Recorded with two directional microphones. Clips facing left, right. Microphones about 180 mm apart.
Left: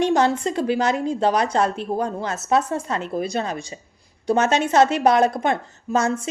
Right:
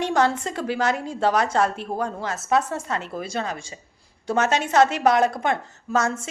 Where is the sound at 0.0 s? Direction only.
20° left (ahead or behind).